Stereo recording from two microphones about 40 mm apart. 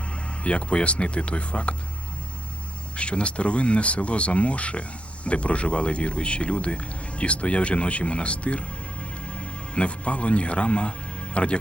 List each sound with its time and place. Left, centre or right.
0.1 s speech: left
2.9 s speech: left